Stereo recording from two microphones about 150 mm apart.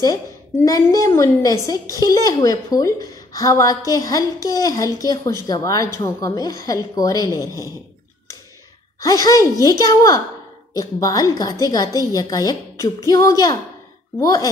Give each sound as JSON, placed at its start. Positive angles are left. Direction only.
{"t": 0.7, "sound": "a woman's voice", "side_deg": 25}
{"t": 9.0, "sound": "a woman's voice", "side_deg": 25}